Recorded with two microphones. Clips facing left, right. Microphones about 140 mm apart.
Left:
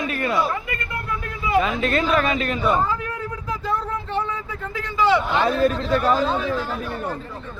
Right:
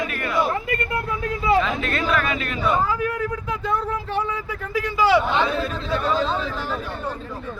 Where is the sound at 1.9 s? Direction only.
30° left (ahead or behind).